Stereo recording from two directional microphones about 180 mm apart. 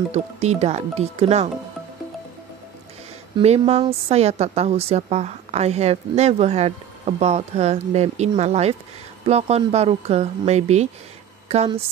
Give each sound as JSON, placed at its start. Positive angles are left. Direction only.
{"t": 0.1, "sound": "a woman's voice", "side_deg": -35}
{"t": 3.3, "sound": "a woman's voice", "side_deg": -35}